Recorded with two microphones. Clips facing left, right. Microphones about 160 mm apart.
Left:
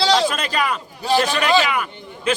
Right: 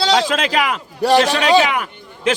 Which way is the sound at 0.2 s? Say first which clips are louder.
Right 3 dB; 90° right.